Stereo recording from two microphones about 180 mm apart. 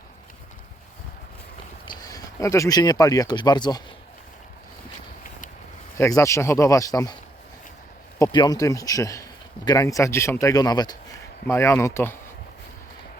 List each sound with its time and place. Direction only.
1.8 s speech: 25° left (ahead or behind)
6.0 s speech: 15° left (ahead or behind)
8.2 s speech: 25° left (ahead or behind)